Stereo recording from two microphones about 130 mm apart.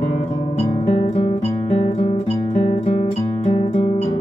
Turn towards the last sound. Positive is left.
turn(degrees=50)  # may be behind; listen again after turning